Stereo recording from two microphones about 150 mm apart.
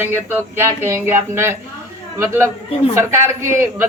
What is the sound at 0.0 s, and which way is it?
A woman's voice, 15° right (ahead or behind).